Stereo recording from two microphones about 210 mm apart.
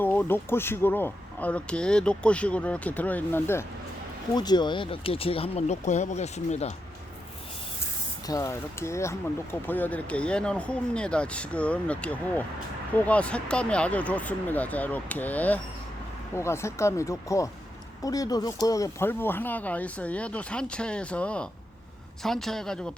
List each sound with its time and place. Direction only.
0.0 s speech: 10° left (ahead or behind); by 6.7 s 30° left (ahead or behind)
8.3 s speech: 15° left (ahead or behind)